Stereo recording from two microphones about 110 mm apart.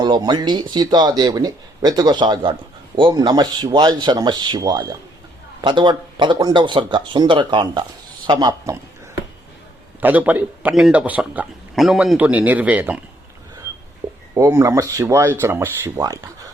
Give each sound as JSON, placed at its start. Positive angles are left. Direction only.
{"t": 0.0, "sound": "speech", "side_deg": -40}
{"t": 10.0, "sound": "speech", "side_deg": -15}
{"t": 11.7, "sound": "speech", "side_deg": 0}
{"t": 14.0, "sound": "a sound", "side_deg": -35}
{"t": 14.3, "sound": "speech", "side_deg": -30}
{"t": 16.0, "sound": "speech", "side_deg": -35}